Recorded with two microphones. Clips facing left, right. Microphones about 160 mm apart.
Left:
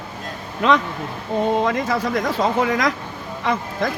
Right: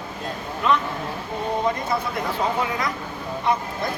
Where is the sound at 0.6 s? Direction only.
90° left.